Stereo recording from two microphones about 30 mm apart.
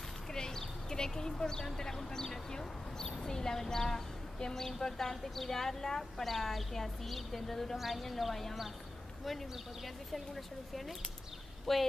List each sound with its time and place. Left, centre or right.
0.3 s a sound: centre
2.1 s a woman's voice: left; by 8.5 s centre
11.7 s a woman's voice: centre